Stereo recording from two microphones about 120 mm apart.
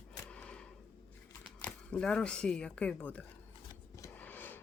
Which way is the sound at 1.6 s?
10° left (ahead or behind).